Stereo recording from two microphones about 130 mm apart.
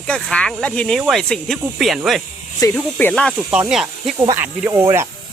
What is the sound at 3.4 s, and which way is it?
Speech, 20° right (ahead or behind).